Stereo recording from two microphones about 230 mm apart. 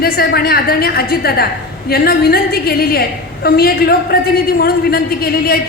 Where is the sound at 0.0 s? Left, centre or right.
Left.